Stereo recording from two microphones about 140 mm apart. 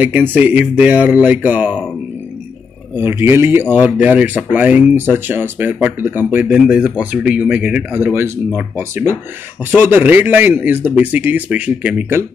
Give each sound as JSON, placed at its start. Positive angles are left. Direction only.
{"t": 0.0, "sound": "speech", "side_deg": -10}
{"t": 3.0, "sound": "speech", "side_deg": -15}